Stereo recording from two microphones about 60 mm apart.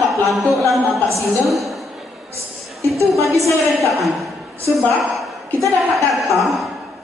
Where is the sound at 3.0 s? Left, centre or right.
Right.